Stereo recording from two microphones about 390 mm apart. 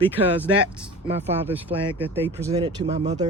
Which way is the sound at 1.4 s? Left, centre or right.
Centre.